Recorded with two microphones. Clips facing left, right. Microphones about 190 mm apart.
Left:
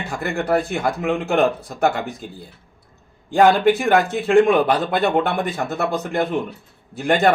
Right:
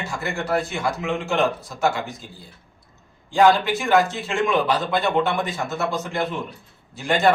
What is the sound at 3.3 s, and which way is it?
A man's voice, 55° left (ahead or behind).